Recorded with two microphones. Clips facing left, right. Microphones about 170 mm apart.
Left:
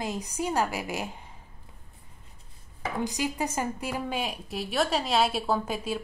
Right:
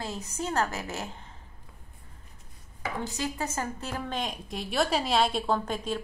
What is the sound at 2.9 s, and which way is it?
A woman's voice, 15° left (ahead or behind).